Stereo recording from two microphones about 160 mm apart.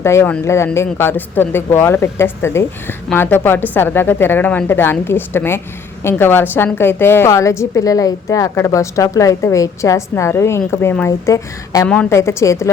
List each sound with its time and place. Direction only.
0.0 s speech: 15° left (ahead or behind)